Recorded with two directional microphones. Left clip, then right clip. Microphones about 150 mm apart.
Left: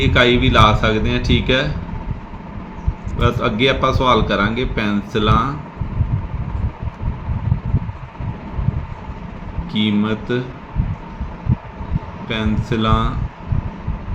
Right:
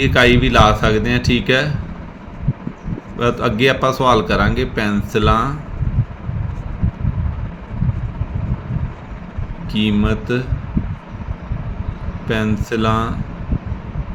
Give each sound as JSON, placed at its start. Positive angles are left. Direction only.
{"t": 0.0, "sound": "a man's voice", "side_deg": -40}
{"t": 3.2, "sound": "a man's voice", "side_deg": -40}
{"t": 9.7, "sound": "a man's voice", "side_deg": -40}
{"t": 12.3, "sound": "a man's voice", "side_deg": -40}